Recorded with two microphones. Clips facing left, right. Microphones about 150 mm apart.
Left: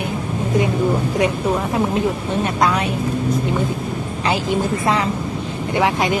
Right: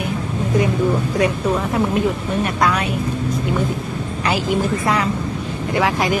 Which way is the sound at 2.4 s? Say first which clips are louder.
Left 1 dB; 25° left (ahead or behind).